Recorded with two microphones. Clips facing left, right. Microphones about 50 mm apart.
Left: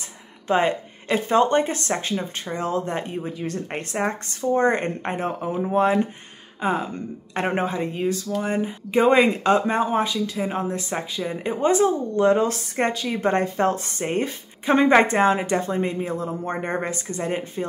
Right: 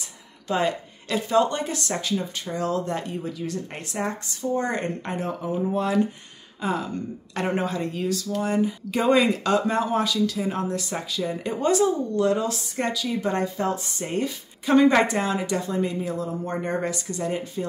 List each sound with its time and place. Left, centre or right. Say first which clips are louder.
0.5 s speech: left 4 dB; left